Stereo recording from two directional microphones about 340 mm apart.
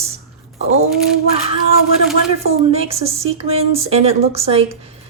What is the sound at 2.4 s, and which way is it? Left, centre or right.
Speech, centre.